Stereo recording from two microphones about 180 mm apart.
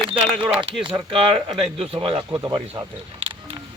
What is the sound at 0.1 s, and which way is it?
Speech, 30° right (ahead or behind).